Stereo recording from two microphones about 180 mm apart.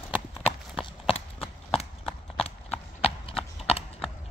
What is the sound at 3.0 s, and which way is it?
Clip-clop, 30° left (ahead or behind).